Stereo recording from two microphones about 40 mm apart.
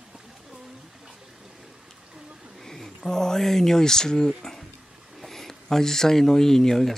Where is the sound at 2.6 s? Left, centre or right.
Centre.